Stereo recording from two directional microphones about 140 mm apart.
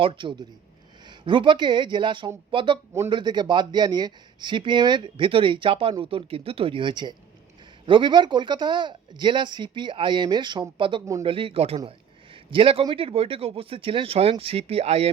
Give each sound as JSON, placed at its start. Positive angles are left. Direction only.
{"t": 0.0, "sound": "speech", "side_deg": -35}